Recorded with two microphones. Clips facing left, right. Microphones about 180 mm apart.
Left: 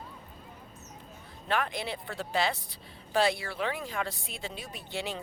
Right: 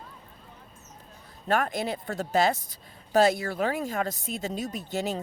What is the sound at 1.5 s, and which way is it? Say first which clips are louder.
Speech: right 5 dB; 45° right (ahead or behind).